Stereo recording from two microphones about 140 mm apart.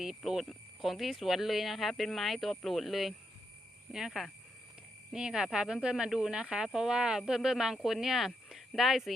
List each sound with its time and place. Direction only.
0.0 s speech: centre (ahead or behind)